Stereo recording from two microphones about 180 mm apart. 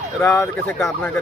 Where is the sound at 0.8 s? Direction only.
Centre (ahead or behind).